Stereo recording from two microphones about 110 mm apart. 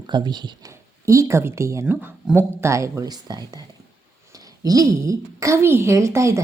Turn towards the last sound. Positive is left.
turn(degrees=-25)  # may be behind; listen again after turning